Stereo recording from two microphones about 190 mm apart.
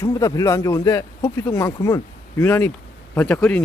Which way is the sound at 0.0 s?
15° left (ahead or behind).